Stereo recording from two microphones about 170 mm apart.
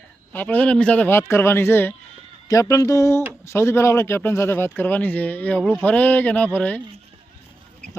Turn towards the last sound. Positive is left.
turn(degrees=10)  # may be behind; listen again after turning